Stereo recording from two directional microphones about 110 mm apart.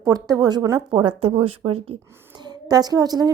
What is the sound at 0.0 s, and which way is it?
Speech, 35° right (ahead or behind).